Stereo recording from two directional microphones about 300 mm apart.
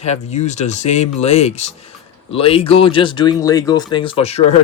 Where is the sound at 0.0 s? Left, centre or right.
Left.